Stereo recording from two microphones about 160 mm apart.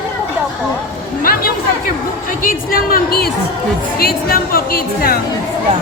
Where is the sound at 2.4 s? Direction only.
65° left (ahead or behind).